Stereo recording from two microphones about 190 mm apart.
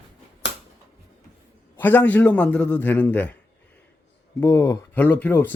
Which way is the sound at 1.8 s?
10° left (ahead or behind).